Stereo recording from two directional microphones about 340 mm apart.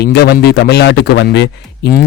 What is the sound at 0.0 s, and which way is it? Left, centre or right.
Speech, left.